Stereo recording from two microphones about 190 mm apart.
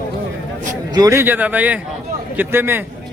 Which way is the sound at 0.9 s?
15° right (ahead or behind).